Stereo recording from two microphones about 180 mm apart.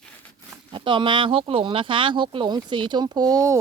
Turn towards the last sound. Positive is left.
turn(degrees=-20)  # may be behind; listen again after turning